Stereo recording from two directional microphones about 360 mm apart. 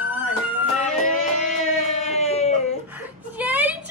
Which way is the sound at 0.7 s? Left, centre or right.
Centre.